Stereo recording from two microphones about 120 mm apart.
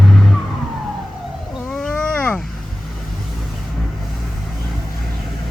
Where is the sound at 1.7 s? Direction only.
10° left (ahead or behind).